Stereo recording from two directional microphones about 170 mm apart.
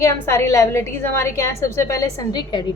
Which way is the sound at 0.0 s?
15° left (ahead or behind).